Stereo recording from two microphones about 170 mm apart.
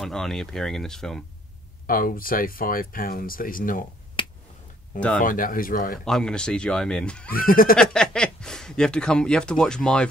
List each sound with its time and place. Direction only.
0.0 s speech: centre (ahead or behind)
1.9 s speech: 55° left (ahead or behind)
4.2 s finger snapping: 30° left (ahead or behind)
5.2 s speech: 55° left (ahead or behind)
6.0 s speech: 5° left (ahead or behind)
7.2 s speech: 55° left (ahead or behind)
7.7 s speech: 5° left (ahead or behind)